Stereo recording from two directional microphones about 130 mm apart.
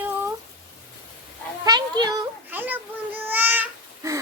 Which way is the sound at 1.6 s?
30° right (ahead or behind).